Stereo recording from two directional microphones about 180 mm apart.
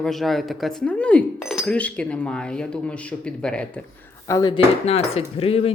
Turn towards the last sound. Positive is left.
turn(degrees=30)  # may be behind; listen again after turning